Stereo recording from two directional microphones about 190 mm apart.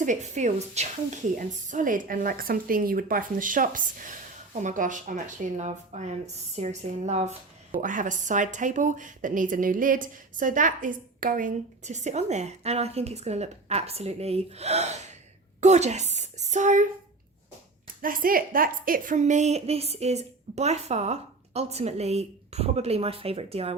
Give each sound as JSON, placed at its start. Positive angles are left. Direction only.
{"t": 0.0, "sound": "a woman's voice", "side_deg": -40}
{"t": 18.0, "sound": "a woman's voice", "side_deg": -45}